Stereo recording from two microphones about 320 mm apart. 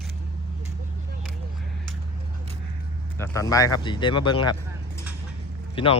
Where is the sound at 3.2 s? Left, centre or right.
Centre.